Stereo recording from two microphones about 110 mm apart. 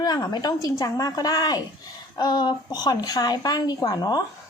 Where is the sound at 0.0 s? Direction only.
40° left (ahead or behind).